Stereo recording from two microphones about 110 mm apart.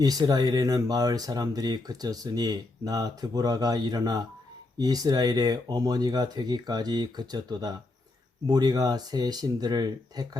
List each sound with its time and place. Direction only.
0.0 s speech: 35° right (ahead or behind)